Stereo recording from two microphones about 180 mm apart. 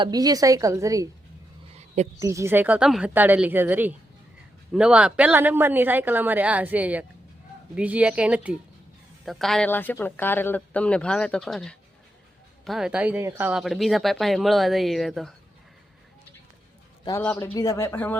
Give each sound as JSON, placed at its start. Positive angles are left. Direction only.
{"t": 0.0, "sound": "a woman's voice", "side_deg": -20}
{"t": 2.1, "sound": "speech", "side_deg": -15}
{"t": 13.5, "sound": "speech", "side_deg": 0}
{"t": 17.1, "sound": "speech", "side_deg": 15}